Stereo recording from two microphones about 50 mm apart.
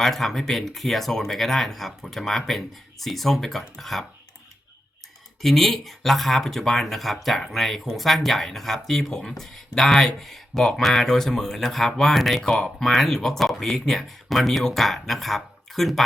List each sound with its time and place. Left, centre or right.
0.0 s speech: centre
5.4 s speech: centre
12.5 s speech: centre
12.8 s speech: centre